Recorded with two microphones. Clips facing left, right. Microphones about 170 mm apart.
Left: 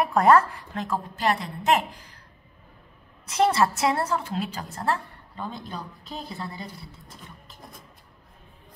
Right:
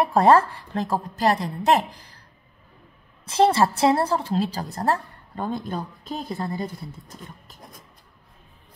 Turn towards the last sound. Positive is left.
turn(degrees=-45)  # may be behind; listen again after turning